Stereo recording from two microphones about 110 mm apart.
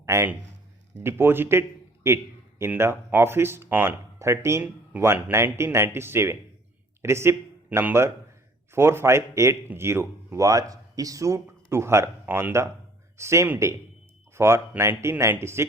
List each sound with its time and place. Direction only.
0.0 s speech: 25° right (ahead or behind)